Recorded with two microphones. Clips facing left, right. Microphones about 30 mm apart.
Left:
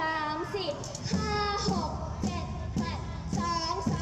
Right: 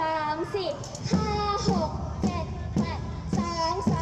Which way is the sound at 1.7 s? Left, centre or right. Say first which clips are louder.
Right 5 dB; right.